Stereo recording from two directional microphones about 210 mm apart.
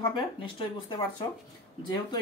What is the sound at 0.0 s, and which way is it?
Speech, 20° left (ahead or behind).